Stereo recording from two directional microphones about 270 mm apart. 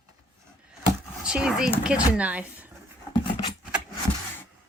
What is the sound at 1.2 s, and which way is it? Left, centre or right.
A woman's voice, centre.